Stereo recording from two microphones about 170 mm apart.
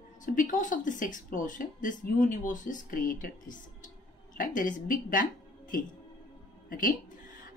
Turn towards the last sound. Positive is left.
turn(degrees=55)  # may be behind; listen again after turning